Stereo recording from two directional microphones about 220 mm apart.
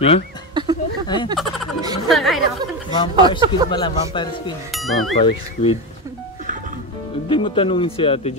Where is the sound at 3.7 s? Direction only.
20° left (ahead or behind).